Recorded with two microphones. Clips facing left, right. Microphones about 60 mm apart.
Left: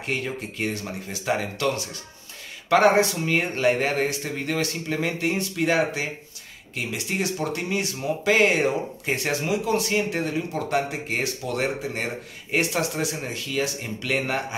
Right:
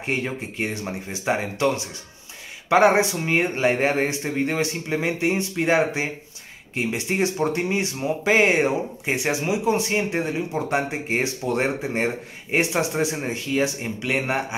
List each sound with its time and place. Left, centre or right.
0.0 s speech: right